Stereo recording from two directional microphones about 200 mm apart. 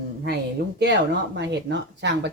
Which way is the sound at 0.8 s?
60° right (ahead or behind).